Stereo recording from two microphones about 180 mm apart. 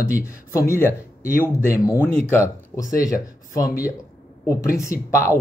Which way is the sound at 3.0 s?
20° left (ahead or behind).